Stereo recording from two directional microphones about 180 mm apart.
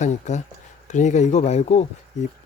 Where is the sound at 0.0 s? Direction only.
40° left (ahead or behind).